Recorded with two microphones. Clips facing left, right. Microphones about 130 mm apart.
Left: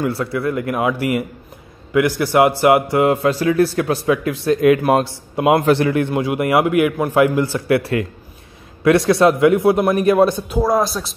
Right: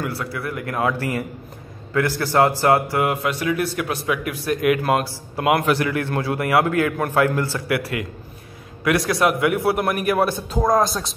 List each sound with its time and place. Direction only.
0.0 s a man's voice: 25° left (ahead or behind)
10.6 s speech: 5° left (ahead or behind)